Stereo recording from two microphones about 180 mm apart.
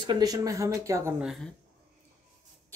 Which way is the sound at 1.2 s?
Centre (ahead or behind).